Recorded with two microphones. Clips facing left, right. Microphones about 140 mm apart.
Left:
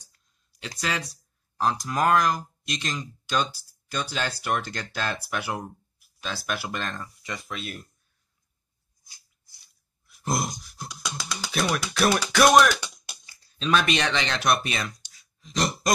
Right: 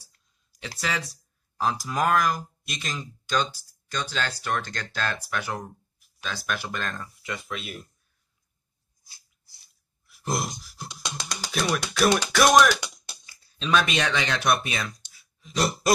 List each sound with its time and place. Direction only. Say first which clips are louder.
0.7 s speech: even; 5° right (ahead or behind)
10.0 s grunt: left 1 dB; centre (ahead or behind)
10.6 s beatboxing: left 1 dB; centre (ahead or behind)
10.9 s beatboxing: left 1 dB; 30° right (ahead or behind)
11.5 s speech: even; centre (ahead or behind)
11.9 s music: right 3 dB; centre (ahead or behind)
12.9 s speech: even; centre (ahead or behind)